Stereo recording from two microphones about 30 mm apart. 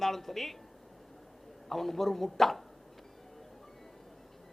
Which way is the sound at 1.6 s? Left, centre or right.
Centre.